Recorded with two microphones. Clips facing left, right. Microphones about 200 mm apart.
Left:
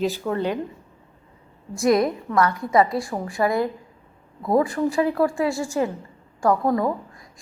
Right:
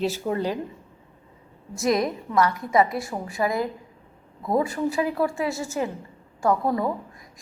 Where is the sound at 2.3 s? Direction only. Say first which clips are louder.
Even; 25° right (ahead or behind).